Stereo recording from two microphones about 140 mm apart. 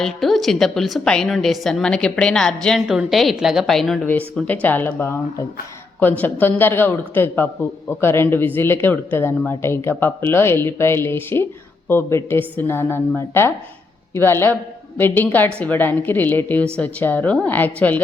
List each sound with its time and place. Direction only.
0.0 s a woman's voice: centre (ahead or behind)